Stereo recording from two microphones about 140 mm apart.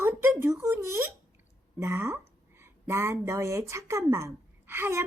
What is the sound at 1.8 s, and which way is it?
A child's voice, 20° right (ahead or behind).